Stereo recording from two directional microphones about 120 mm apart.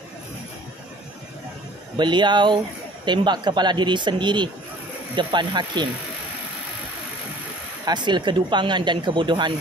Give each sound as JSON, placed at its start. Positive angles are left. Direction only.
{"t": 2.0, "sound": "speech", "side_deg": -40}
{"t": 7.8, "sound": "speech", "side_deg": -40}